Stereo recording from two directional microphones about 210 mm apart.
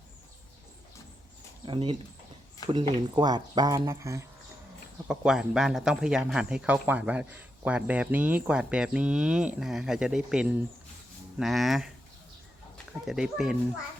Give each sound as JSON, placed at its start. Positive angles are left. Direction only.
{"t": 1.6, "sound": "speech", "side_deg": -25}
{"t": 5.0, "sound": "speech", "side_deg": -5}